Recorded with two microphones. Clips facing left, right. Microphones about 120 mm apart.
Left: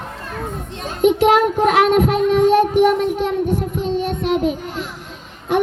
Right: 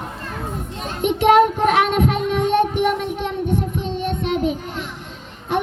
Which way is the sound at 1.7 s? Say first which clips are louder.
Left 3 dB; 40° left (ahead or behind).